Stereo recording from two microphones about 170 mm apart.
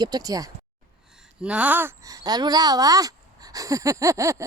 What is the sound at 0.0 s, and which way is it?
Speech, 20° right (ahead or behind).